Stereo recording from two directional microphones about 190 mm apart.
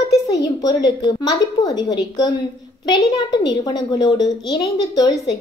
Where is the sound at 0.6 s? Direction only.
20° left (ahead or behind).